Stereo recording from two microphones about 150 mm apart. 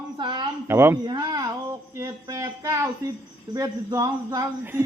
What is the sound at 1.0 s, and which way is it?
Speech, 25° right (ahead or behind).